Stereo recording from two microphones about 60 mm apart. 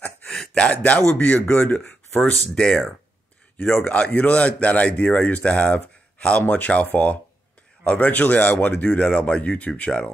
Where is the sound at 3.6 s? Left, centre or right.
Left.